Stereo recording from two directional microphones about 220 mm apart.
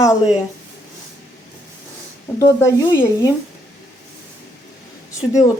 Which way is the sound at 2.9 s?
10° left (ahead or behind).